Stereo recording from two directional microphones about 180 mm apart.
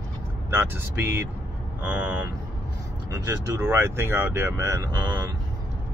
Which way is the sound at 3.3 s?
15° right (ahead or behind).